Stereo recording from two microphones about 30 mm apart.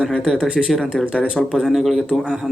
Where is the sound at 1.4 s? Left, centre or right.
Centre.